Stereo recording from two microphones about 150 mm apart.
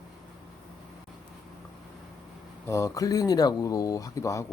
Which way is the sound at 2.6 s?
20° left (ahead or behind).